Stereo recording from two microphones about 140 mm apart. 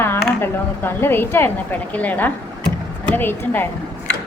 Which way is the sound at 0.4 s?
15° left (ahead or behind).